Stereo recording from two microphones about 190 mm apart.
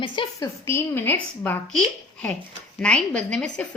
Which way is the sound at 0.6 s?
10° left (ahead or behind).